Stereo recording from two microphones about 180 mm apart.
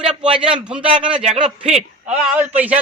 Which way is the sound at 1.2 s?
35° right (ahead or behind).